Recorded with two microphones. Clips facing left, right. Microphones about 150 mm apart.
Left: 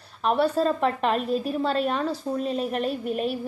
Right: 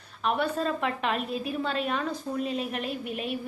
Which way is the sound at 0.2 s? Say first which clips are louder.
Left 5 dB; 35° left (ahead or behind).